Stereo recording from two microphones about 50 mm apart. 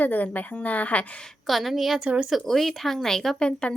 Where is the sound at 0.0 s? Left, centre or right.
Left.